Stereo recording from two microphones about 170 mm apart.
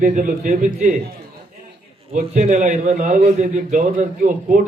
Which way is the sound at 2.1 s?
45° right (ahead or behind).